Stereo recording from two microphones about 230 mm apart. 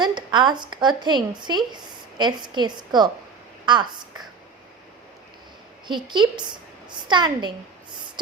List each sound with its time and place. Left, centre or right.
0.0 s a woman's voice: centre
5.9 s a woman's voice: centre
7.9 s a sound: centre